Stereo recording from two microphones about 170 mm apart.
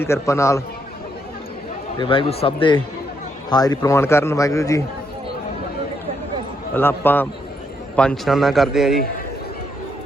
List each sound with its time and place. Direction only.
0.0 s a man's voice: 15° left (ahead or behind)
2.0 s a man's voice: 30° left (ahead or behind)
6.7 s a man's voice: 10° left (ahead or behind)